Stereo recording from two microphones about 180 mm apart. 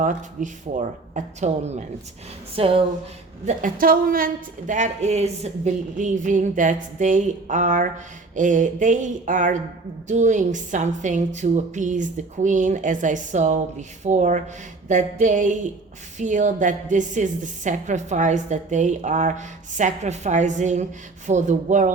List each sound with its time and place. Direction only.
0.0 s a woman's voice: 45° right (ahead or behind)
3.4 s a woman's voice: 50° right (ahead or behind)